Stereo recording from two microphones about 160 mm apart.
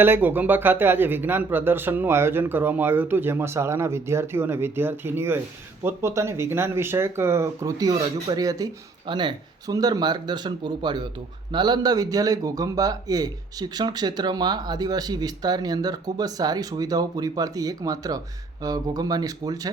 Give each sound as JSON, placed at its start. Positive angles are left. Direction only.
{"t": 0.0, "sound": "speech", "side_deg": -10}